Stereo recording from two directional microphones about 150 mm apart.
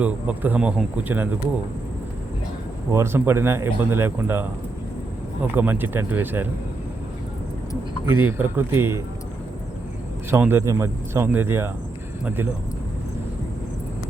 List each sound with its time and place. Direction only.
0.0 s speech: 10° right (ahead or behind)
2.9 s speech: 15° right (ahead or behind)
5.5 s speech: 15° right (ahead or behind)
8.1 s speech: 15° right (ahead or behind)
10.3 s speech: 15° right (ahead or behind)